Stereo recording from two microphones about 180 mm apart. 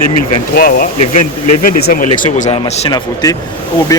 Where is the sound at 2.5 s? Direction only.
25° left (ahead or behind).